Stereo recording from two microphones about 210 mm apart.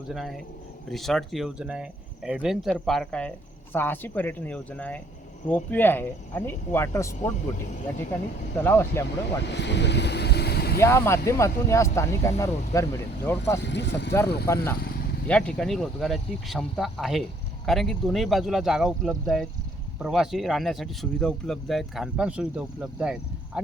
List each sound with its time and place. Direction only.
0.1 s speech: centre (ahead or behind)
8.5 s speech: 10° left (ahead or behind)
9.5 s boat: 55° left (ahead or behind)
10.8 s speech: 15° left (ahead or behind)
13.6 s speech: 55° left (ahead or behind)
14.4 s speech: 10° left (ahead or behind)
14.8 s vehicle: 45° left (ahead or behind)
15.3 s speech: 5° left (ahead or behind)